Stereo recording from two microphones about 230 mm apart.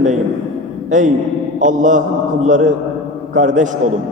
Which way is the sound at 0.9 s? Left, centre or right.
Right.